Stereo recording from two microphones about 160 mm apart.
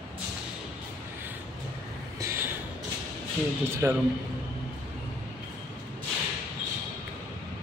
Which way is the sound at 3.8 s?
15° right (ahead or behind).